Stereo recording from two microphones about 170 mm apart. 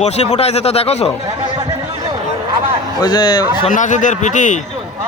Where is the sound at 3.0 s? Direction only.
25° left (ahead or behind).